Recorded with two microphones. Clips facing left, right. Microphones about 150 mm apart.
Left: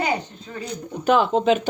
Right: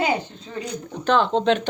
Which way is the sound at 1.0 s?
10° left (ahead or behind).